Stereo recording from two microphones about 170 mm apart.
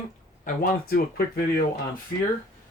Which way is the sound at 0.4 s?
60° left (ahead or behind).